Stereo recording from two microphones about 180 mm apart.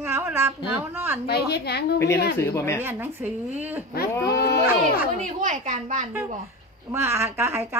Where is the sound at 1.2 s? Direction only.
65° left (ahead or behind).